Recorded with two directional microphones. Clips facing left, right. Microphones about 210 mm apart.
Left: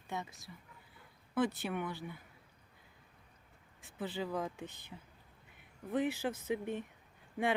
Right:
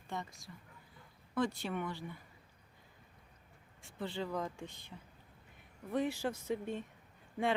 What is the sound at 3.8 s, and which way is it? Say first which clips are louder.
Speech: left 1 dB; 5° left (ahead or behind).